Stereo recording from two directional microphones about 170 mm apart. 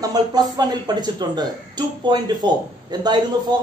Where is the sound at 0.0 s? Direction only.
25° right (ahead or behind).